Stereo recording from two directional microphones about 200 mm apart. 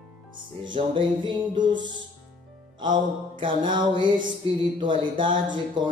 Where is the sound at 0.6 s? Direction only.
25° right (ahead or behind).